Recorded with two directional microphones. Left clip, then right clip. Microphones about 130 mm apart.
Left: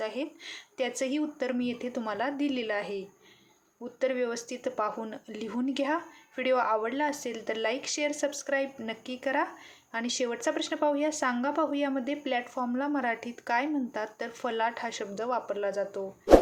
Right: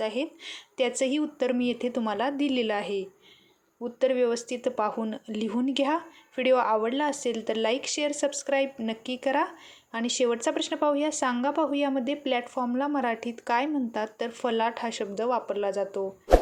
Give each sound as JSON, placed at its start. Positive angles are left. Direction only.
{"t": 0.0, "sound": "speech", "side_deg": -35}